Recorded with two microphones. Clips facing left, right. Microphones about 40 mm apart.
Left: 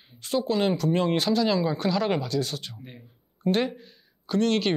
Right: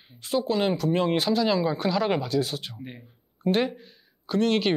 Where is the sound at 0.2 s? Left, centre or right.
Centre.